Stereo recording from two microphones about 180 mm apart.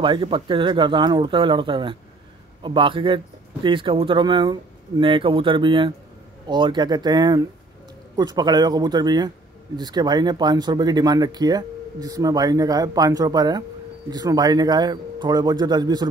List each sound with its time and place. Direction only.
0.0 s speech: 30° right (ahead or behind)